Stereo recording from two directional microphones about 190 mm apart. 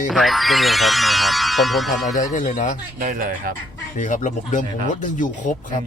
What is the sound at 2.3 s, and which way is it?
Speech, 40° left (ahead or behind).